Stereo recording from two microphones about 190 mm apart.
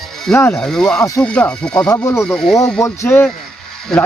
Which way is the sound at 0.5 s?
Centre (ahead or behind).